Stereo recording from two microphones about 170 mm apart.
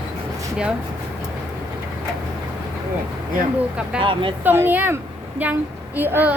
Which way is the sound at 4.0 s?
30° right (ahead or behind).